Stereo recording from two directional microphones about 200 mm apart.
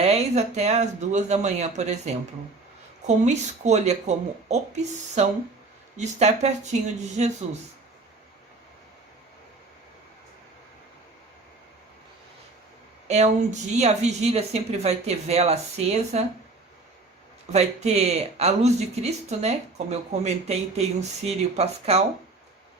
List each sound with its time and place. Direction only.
0.0 s speech: 30° right (ahead or behind)
13.1 s speech: 35° right (ahead or behind)
17.5 s speech: 35° right (ahead or behind)